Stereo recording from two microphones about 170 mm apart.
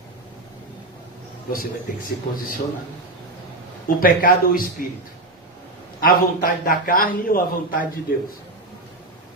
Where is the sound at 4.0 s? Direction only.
55° left (ahead or behind).